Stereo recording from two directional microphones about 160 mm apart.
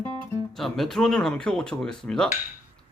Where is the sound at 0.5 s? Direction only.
Centre (ahead or behind).